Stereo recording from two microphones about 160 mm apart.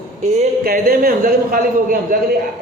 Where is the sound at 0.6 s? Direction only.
65° right (ahead or behind).